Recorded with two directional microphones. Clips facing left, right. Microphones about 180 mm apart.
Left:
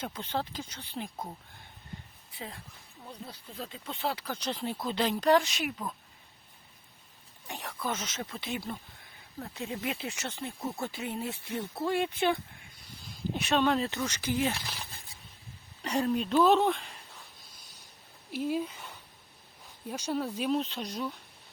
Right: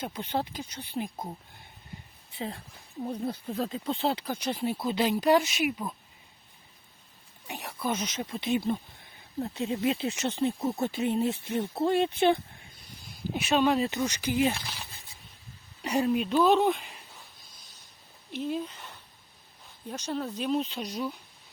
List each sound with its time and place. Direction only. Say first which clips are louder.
0.0 s speech: right 3 dB; 15° right (ahead or behind)
2.3 s speech: right 7 dB; 25° right (ahead or behind)
3.0 s speech: right 13 dB; 50° right (ahead or behind); by 5.9 s 10° right (ahead or behind)
7.4 s speech: right 3 dB; 10° right (ahead or behind); by 12.4 s 25° right (ahead or behind)
13.3 s speech: right 2 dB; 5° right (ahead or behind)
15.8 s speech: right 3 dB; 10° right (ahead or behind)
18.3 s speech: left 1 dB; 5° left (ahead or behind)